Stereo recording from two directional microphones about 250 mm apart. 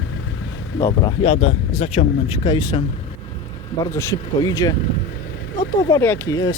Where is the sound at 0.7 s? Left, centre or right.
Centre.